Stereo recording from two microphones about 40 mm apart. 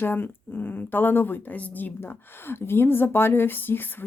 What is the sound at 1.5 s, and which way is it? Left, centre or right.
Speech, left.